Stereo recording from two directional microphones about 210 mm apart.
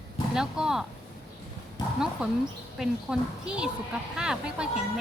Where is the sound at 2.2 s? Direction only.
5° right (ahead or behind).